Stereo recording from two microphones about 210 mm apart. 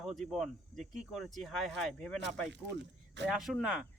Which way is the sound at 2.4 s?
55° right (ahead or behind).